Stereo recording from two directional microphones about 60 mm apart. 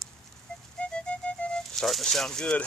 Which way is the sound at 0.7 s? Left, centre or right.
Centre.